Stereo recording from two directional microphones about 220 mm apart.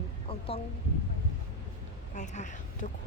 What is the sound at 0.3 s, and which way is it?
Speech, 25° left (ahead or behind).